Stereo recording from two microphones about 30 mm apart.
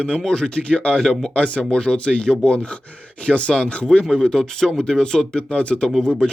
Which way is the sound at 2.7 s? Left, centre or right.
Left.